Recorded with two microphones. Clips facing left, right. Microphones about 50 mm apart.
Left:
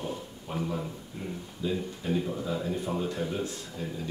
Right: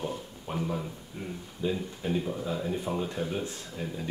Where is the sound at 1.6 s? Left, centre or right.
Right.